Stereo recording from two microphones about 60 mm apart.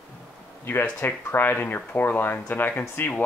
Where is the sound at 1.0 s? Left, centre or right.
Left.